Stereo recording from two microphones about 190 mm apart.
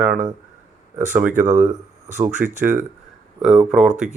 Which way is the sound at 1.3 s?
40° right (ahead or behind).